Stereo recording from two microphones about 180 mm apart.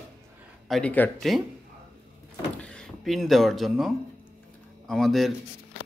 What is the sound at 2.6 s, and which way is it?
Speech, 5° left (ahead or behind).